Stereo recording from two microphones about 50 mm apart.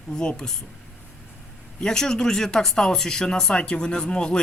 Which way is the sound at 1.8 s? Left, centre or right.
Centre.